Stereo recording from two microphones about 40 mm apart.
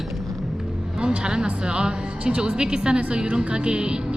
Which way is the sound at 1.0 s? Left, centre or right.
Right.